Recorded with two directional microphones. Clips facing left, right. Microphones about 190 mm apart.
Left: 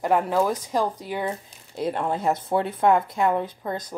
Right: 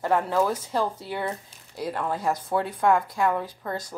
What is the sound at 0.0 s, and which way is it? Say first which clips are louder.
A woman's voice: left 2 dB; 15° left (ahead or behind).